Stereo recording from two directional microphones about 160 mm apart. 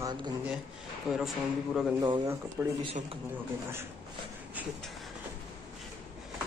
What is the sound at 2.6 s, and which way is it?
Speech, 10° right (ahead or behind).